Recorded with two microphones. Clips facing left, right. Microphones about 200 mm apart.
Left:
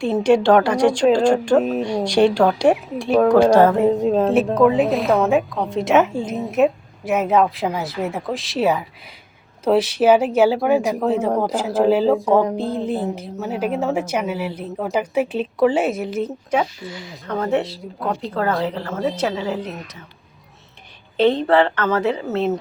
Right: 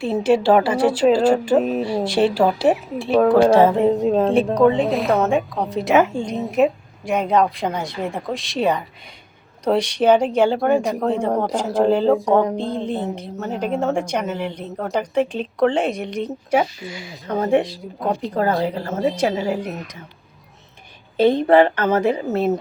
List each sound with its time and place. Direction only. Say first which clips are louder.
0.0 s speech: left 2 dB; 5° right (ahead or behind)
16.5 s a woman's voice: right 5 dB; 10° right (ahead or behind)
21.2 s a woman's voice: right 2 dB; 10° right (ahead or behind)